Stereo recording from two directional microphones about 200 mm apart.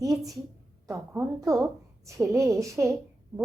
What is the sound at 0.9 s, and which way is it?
A woman's voice, 10° right (ahead or behind).